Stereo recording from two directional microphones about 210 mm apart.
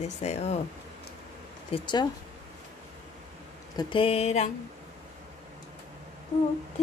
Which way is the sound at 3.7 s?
25° left (ahead or behind).